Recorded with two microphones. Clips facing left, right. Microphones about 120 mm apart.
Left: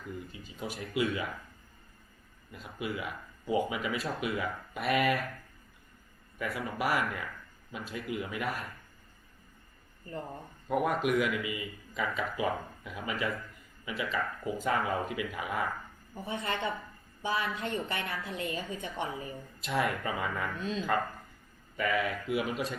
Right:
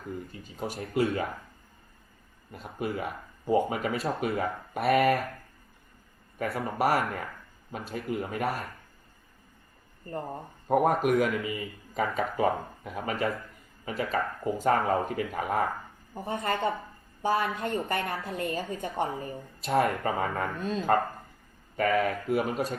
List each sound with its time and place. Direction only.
0.0 s a sound: 45° right (ahead or behind)
0.9 s a man's voice: 40° right (ahead or behind)
2.5 s a man's voice: 45° right (ahead or behind)
6.4 s a man's voice: 45° right (ahead or behind)
10.2 s speech: 30° right (ahead or behind)
10.7 s a man's voice: 45° right (ahead or behind)
21.0 s a sound: 35° right (ahead or behind)
21.8 s a man's voice: 45° right (ahead or behind)